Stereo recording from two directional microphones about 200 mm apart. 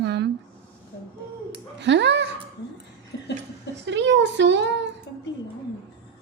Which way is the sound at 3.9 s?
65° right (ahead or behind).